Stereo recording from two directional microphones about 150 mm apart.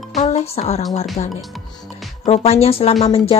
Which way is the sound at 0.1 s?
50° left (ahead or behind).